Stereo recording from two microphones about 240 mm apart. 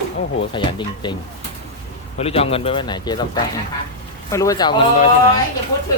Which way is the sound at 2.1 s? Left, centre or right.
Left.